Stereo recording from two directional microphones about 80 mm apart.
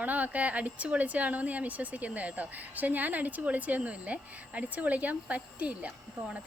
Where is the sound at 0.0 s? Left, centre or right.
Centre.